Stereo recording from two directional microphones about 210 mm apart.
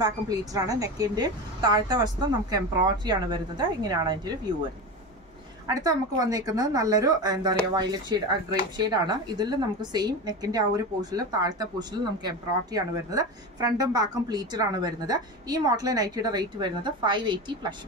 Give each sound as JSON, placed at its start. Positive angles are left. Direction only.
{"t": 0.0, "sound": "a woman's voice", "side_deg": -15}
{"t": 5.7, "sound": "a woman's voice", "side_deg": -15}